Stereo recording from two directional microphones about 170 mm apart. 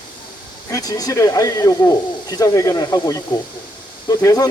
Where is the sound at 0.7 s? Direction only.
20° left (ahead or behind).